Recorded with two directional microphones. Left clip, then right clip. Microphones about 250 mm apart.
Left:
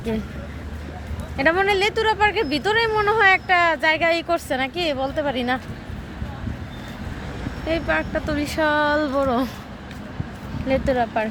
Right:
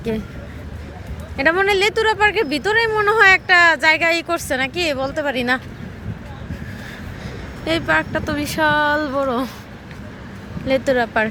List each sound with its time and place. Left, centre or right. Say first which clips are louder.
1.4 s speech: right 3 dB; centre
7.6 s speech: right 4 dB; centre
10.7 s speech: right 3 dB; centre